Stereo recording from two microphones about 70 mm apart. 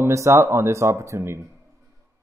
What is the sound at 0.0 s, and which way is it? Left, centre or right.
Speech, right.